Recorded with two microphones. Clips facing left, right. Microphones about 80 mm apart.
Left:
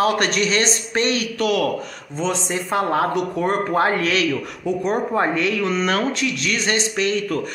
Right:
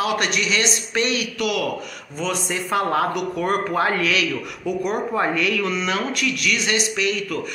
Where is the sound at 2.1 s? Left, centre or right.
Left.